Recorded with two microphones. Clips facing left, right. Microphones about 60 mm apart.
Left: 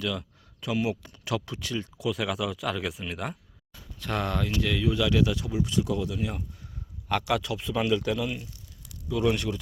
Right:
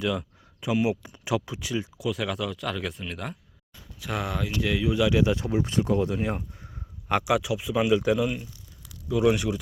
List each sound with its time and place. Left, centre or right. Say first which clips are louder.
0.0 s speech: right 4 dB; centre
2.0 s speech: left 1 dB; centre
4.0 s a man's voice: left 1 dB; centre
5.2 s speech: right 2 dB; right
7.1 s a man's voice: right 3 dB; centre